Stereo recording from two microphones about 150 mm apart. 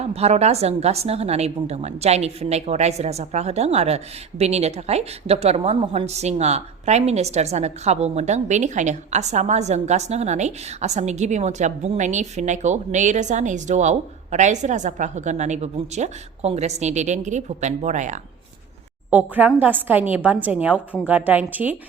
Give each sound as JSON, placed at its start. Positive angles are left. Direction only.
{"t": 0.0, "sound": "a woman's voice", "side_deg": -45}
{"t": 19.1, "sound": "a woman's voice", "side_deg": -10}